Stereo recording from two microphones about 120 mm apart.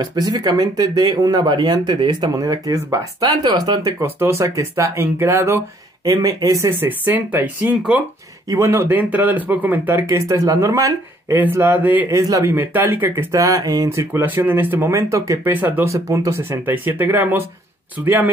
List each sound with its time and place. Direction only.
0.0 s speech: 35° right (ahead or behind)
4.0 s speech: 20° right (ahead or behind)
6.9 s speech: 15° right (ahead or behind)
8.5 s speech: 25° right (ahead or behind)
12.1 s speech: 30° right (ahead or behind)
12.5 s speech: 15° right (ahead or behind)